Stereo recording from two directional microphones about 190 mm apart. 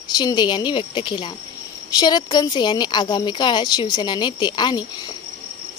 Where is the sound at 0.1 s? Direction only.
20° left (ahead or behind).